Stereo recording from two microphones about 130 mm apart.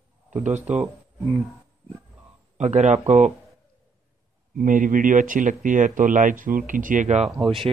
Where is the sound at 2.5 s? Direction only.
60° right (ahead or behind).